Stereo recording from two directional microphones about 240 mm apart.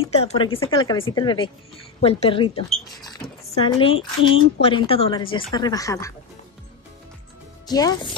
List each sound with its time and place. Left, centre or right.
0.0 s speech: left
7.6 s speech: centre